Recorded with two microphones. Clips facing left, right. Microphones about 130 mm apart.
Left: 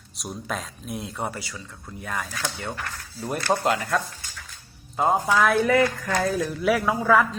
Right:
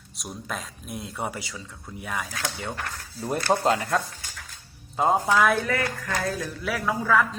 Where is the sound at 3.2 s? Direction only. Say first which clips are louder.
Right 1 dB; 25° right (ahead or behind).